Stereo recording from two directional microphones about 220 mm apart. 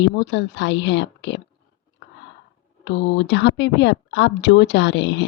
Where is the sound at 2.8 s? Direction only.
55° left (ahead or behind).